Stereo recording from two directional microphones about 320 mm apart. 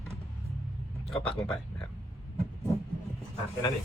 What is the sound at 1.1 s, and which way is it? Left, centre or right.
Speech, centre.